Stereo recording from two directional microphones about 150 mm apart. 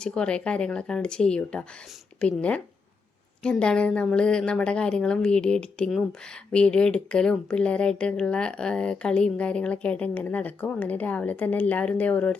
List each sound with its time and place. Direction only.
0.0 s speech: 5° left (ahead or behind)